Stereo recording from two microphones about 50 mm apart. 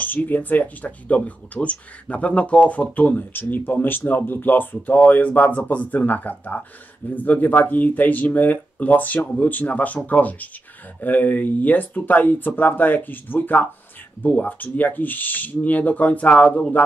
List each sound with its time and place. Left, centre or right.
0.0 s speech: left